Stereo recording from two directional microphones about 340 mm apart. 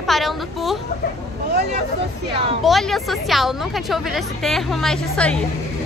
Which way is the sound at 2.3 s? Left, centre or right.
Centre.